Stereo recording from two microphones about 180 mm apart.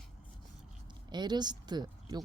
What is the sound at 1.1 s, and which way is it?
Speech, 25° right (ahead or behind).